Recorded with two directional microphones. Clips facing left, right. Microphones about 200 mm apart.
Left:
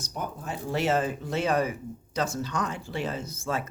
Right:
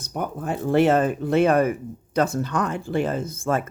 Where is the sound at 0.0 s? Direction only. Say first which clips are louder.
Right 7 dB; 60° right (ahead or behind).